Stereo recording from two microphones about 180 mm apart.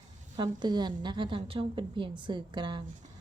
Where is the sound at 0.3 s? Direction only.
25° right (ahead or behind).